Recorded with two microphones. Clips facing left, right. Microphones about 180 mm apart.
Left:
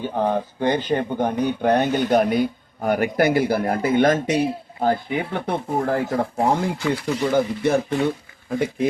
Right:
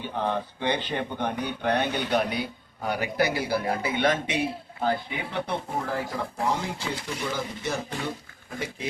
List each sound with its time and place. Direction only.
0.0 s speech: 45° left (ahead or behind)